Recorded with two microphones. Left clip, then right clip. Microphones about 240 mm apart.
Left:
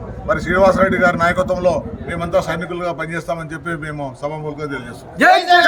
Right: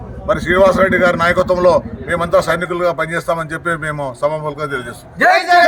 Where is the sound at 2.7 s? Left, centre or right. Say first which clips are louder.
Right 6 dB; centre.